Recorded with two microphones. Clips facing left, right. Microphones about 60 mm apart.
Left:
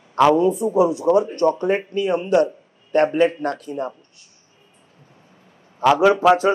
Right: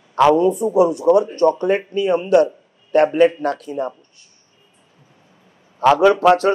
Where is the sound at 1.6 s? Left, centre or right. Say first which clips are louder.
Right 2 dB; right.